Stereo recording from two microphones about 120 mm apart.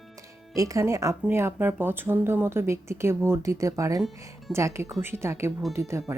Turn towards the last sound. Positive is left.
turn(degrees=-25)  # may be behind; listen again after turning